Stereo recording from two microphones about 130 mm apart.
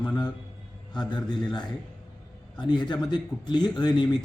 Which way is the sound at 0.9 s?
35° left (ahead or behind).